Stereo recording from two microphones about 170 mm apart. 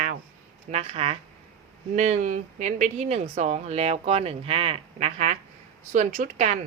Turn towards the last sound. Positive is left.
turn(degrees=-40)  # may be behind; listen again after turning